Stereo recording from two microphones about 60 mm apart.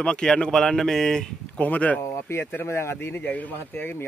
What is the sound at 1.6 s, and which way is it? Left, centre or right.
Speech, left.